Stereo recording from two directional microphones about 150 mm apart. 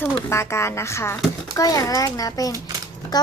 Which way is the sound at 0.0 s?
20° left (ahead or behind).